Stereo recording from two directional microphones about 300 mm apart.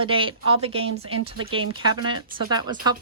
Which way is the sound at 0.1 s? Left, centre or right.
Centre.